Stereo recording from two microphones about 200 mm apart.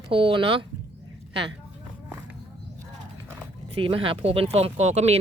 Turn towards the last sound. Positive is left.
turn(degrees=-35)  # may be behind; listen again after turning